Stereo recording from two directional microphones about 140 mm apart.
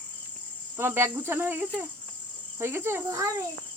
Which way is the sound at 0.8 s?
15° right (ahead or behind).